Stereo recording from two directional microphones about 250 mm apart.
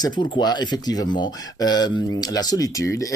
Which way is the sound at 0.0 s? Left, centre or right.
Centre.